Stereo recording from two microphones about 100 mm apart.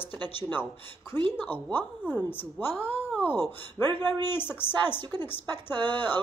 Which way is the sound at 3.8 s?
45° right (ahead or behind).